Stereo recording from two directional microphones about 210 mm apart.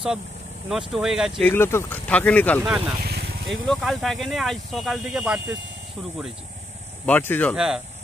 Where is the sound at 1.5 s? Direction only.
10° left (ahead or behind).